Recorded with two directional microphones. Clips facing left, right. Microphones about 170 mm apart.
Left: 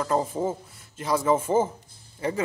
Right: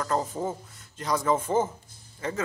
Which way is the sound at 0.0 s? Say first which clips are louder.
Left 3 dB; 10° left (ahead or behind).